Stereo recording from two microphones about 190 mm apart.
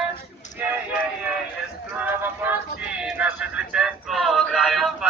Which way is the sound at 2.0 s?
10° right (ahead or behind).